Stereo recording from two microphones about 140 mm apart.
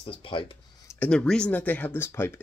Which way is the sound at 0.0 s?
40° left (ahead or behind).